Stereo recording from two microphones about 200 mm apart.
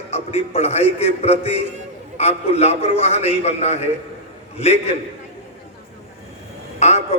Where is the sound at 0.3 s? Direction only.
30° left (ahead or behind).